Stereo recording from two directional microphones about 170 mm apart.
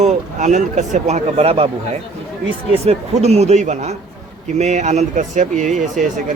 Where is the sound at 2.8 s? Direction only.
40° right (ahead or behind).